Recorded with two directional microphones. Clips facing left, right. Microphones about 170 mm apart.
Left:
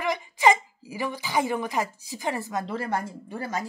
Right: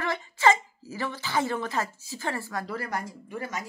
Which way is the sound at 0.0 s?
15° left (ahead or behind).